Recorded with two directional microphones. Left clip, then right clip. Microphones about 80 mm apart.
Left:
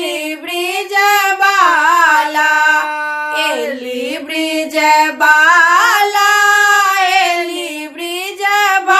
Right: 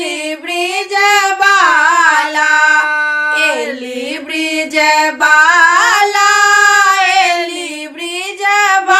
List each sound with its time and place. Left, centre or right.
0.6 s child singing: left
1.7 s music: left
2.8 s chicken: right
3.3 s a sound: left
4.5 s singing: left
8.4 s child singing: left